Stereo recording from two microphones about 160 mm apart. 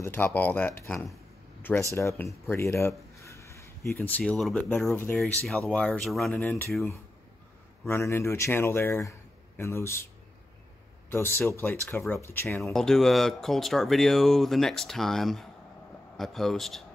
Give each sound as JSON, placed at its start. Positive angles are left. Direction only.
{"t": 0.0, "sound": "speech", "side_deg": 10}
{"t": 3.2, "sound": "a sound", "side_deg": 20}
{"t": 3.8, "sound": "speech", "side_deg": 10}
{"t": 6.4, "sound": "speech", "side_deg": 10}
{"t": 6.7, "sound": "speech", "side_deg": 0}
{"t": 7.8, "sound": "speech", "side_deg": 15}
{"t": 11.1, "sound": "speech", "side_deg": 15}
{"t": 12.6, "sound": "speech", "side_deg": 0}